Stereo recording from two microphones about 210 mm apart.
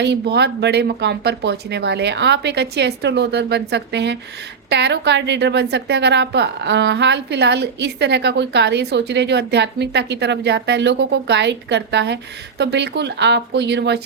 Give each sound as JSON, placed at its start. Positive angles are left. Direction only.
{"t": 0.0, "sound": "a woman's voice", "side_deg": -55}